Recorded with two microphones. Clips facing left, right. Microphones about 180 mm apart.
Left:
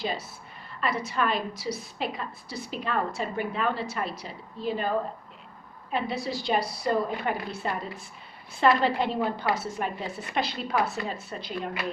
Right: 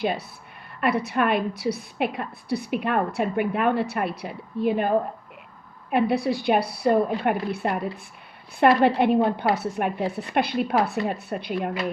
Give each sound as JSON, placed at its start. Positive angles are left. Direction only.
{"t": 0.0, "sound": "a woman's voice", "side_deg": -60}
{"t": 5.9, "sound": "a woman's voice", "side_deg": -60}